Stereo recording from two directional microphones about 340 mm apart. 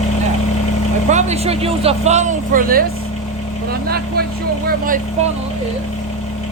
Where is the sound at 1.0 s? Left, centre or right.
Centre.